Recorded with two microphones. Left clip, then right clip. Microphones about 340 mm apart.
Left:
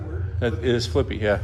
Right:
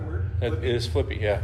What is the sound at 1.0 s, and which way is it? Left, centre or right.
Speech, left.